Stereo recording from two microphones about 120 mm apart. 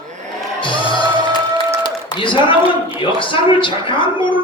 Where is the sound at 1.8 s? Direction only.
45° left (ahead or behind).